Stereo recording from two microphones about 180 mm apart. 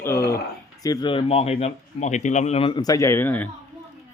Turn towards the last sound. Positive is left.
turn(degrees=10)  # may be behind; listen again after turning